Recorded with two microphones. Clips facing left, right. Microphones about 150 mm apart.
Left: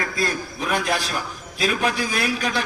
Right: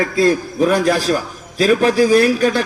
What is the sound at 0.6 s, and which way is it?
A man's voice, 40° right (ahead or behind).